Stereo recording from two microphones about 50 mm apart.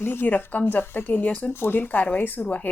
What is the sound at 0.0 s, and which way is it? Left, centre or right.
A woman's voice, left.